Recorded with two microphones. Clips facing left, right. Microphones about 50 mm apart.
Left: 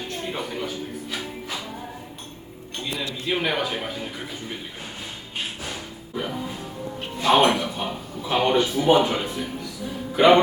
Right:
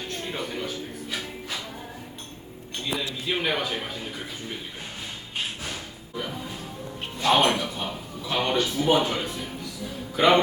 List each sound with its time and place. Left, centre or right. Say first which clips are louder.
0.3 s a man's voice: left 1 dB; centre
3.2 s a man's voice: left 3 dB; centre
5.6 s music: left 2 dB; centre
7.2 s speech: left 3 dB; centre